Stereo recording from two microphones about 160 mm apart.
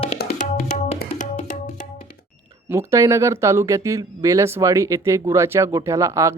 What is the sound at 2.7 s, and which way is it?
Speech, 20° right (ahead or behind).